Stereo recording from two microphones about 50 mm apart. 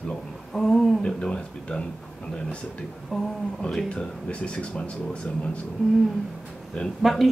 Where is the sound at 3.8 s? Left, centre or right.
Left.